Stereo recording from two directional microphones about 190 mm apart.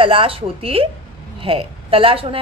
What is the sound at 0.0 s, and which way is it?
A woman's voice, 30° right (ahead or behind).